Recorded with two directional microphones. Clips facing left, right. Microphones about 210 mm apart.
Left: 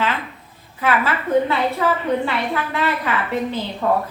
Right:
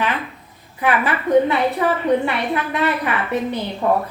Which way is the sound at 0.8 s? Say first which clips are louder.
Right 1 dB; 15° right (ahead or behind).